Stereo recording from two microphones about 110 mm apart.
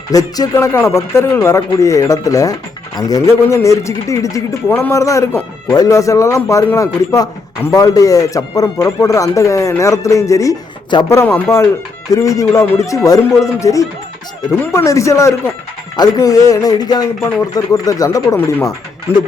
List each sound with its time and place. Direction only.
0.1 s speech: 35° left (ahead or behind)
0.5 s speech: 20° left (ahead or behind)